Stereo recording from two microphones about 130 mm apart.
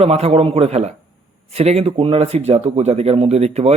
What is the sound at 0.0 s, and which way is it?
Speech, 50° right (ahead or behind).